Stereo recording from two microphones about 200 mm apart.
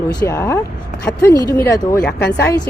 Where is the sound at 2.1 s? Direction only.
55° left (ahead or behind).